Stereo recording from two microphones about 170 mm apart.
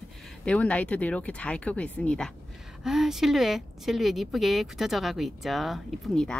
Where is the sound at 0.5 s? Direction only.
10° left (ahead or behind).